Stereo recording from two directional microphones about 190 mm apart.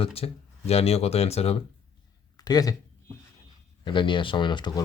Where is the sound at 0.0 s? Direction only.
30° left (ahead or behind).